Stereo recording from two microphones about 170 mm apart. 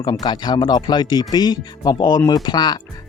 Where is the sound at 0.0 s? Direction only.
25° left (ahead or behind).